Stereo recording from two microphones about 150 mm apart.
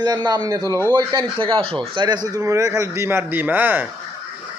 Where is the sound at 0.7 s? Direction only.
15° left (ahead or behind).